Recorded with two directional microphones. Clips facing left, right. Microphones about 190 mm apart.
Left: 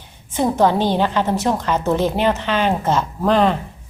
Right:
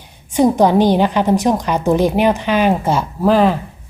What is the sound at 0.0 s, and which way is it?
A woman's voice, 15° right (ahead or behind).